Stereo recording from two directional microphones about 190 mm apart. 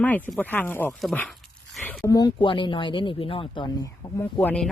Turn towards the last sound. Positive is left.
turn(degrees=5)  # may be behind; listen again after turning